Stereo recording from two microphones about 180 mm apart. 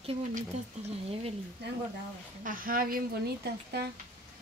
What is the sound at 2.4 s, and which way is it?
A woman's voice, 50° right (ahead or behind).